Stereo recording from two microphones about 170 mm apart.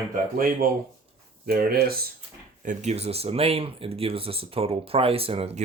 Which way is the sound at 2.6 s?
40° right (ahead or behind).